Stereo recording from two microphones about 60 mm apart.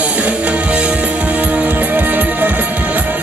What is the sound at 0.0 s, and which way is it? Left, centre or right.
Music, right.